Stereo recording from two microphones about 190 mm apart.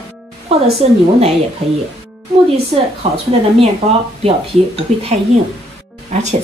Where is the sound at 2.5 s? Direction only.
30° right (ahead or behind).